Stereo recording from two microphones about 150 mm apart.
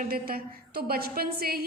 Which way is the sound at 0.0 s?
75° right (ahead or behind).